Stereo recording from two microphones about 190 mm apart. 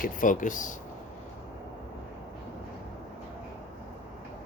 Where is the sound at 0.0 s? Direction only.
45° left (ahead or behind).